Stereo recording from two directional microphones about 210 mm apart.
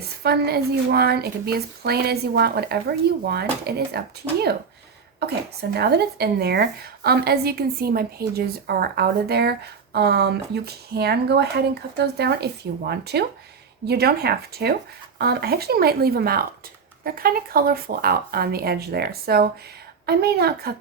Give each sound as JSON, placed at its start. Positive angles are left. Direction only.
{"t": 0.2, "sound": "speech", "side_deg": -50}